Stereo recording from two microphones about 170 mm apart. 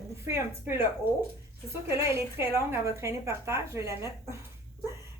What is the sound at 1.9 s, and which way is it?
A woman's voice, 15° right (ahead or behind).